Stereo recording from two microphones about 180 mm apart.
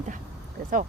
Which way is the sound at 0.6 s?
60° right (ahead or behind).